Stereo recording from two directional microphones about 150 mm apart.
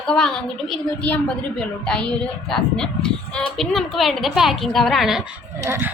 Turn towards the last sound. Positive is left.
turn(degrees=-15)  # may be behind; listen again after turning